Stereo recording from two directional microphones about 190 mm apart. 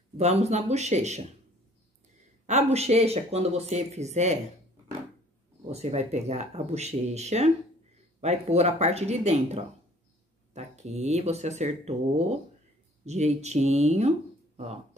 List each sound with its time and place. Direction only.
0.2 s speech: 35° right (ahead or behind)
2.4 s speech: 35° right (ahead or behind)
5.7 s speech: 35° right (ahead or behind)